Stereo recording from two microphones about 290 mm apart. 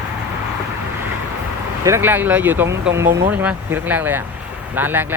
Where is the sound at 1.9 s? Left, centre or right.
Centre.